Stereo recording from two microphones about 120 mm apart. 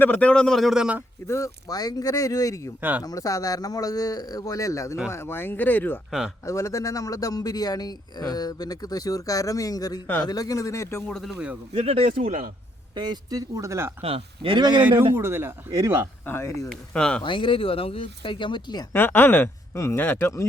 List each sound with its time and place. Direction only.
0.0 s speech: 15° left (ahead or behind); by 1.0 s 10° right (ahead or behind)
1.3 s speech: 30° left (ahead or behind)
6.1 s speech: 5° right (ahead or behind)
6.4 s a man's voice: 25° left (ahead or behind)
11.1 s speech: centre (ahead or behind)
11.7 s speech: 55° right (ahead or behind); by 12.5 s 90° right
12.9 s speech: 40° right (ahead or behind)
13.5 s speech: 25° right (ahead or behind)
14.0 s speech: 55° right (ahead or behind)
14.8 s speech: 15° right (ahead or behind)
16.2 s speech: 20° left (ahead or behind)
16.6 s speech: 5° left (ahead or behind)
17.2 s speech: 45° left (ahead or behind)
18.9 s speech: 20° left (ahead or behind)